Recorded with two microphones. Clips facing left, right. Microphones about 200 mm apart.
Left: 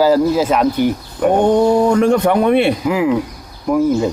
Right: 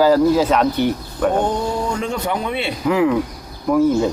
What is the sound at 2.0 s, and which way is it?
Speech, 60° left (ahead or behind).